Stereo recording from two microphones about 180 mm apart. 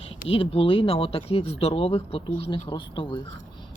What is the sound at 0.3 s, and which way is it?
A woman's voice, 30° left (ahead or behind).